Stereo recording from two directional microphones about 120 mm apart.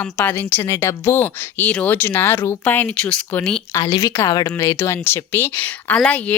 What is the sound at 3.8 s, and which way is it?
Speech, 40° left (ahead or behind).